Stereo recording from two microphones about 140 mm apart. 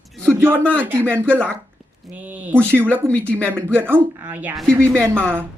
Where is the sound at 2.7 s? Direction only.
15° right (ahead or behind).